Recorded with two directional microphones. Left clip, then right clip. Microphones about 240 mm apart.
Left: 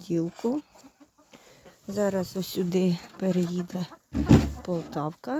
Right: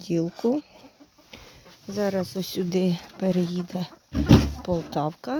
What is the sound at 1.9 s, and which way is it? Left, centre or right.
Speech, centre.